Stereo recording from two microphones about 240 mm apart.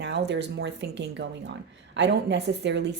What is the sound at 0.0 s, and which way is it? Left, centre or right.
Speech, right.